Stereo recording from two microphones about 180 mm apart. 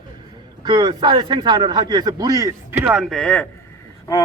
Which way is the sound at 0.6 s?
20° right (ahead or behind).